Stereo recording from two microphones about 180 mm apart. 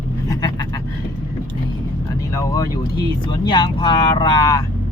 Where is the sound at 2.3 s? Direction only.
20° left (ahead or behind).